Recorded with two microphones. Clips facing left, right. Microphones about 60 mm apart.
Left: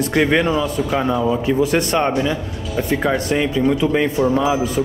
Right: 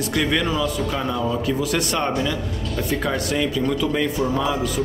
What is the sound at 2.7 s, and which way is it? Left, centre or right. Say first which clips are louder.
Speech: left 5 dB; centre.